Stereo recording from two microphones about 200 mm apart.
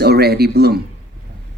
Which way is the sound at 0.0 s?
55° right (ahead or behind).